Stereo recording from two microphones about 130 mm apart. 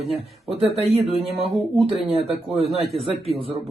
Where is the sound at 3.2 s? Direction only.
45° right (ahead or behind).